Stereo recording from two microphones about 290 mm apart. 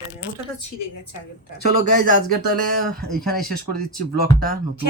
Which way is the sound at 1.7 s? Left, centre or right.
Right.